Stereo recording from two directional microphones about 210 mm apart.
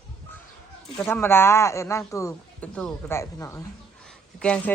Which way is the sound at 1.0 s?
10° left (ahead or behind).